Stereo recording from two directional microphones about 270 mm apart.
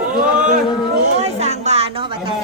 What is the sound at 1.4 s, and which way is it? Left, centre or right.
Speech, right.